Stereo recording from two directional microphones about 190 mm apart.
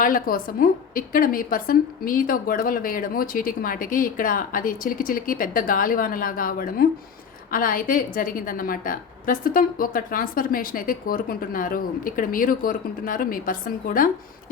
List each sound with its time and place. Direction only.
0.0 s a woman's voice: 45° left (ahead or behind)